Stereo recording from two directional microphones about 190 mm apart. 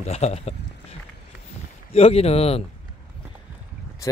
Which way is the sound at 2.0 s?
30° left (ahead or behind).